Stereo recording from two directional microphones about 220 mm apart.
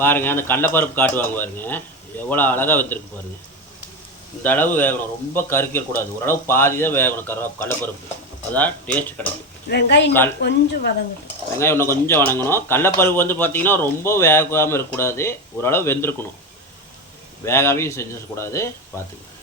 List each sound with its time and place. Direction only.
0.0 s a man's voice: 10° left (ahead or behind)
4.4 s a man's voice: 10° left (ahead or behind)
9.6 s speech: 50° left (ahead or behind)
10.1 s a man's voice: 10° left (ahead or behind)
11.5 s a man's voice: 10° left (ahead or behind)
17.4 s a man's voice: 10° left (ahead or behind)